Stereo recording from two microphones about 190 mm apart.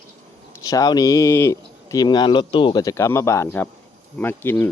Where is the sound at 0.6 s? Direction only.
20° left (ahead or behind).